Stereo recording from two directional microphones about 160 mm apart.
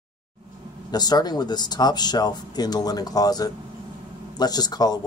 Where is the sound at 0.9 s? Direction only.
25° left (ahead or behind).